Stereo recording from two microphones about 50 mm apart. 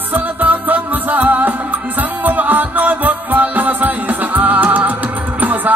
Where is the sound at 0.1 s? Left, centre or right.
Right.